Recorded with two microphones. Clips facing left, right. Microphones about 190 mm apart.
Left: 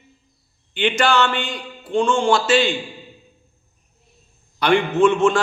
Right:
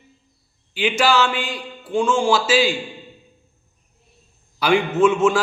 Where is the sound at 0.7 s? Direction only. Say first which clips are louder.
Even; 5° right (ahead or behind).